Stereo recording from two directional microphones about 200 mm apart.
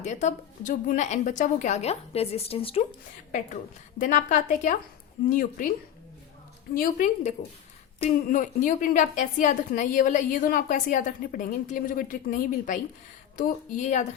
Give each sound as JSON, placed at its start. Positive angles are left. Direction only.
{"t": 0.0, "sound": "a woman's voice", "side_deg": 35}
{"t": 3.3, "sound": "a woman's voice", "side_deg": 40}
{"t": 6.7, "sound": "a woman's voice", "side_deg": 45}